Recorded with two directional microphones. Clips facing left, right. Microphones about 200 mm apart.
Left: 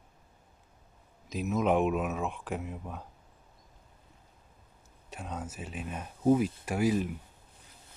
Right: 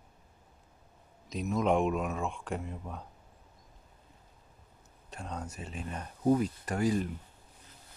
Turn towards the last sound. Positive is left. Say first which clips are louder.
# left 2 dB
turn(degrees=5)  # may be behind; listen again after turning